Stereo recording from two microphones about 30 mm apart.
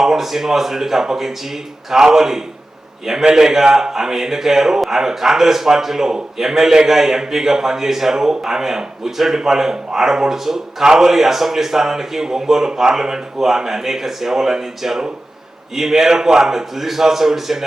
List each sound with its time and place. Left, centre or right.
0.0 s speech: centre
10.8 s a man's voice: right
11.1 s speech: centre